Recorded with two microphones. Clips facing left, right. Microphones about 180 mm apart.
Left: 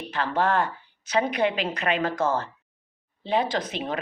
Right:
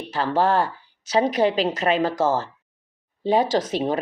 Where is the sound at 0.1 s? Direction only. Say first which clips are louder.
Right 4 dB; 40° right (ahead or behind).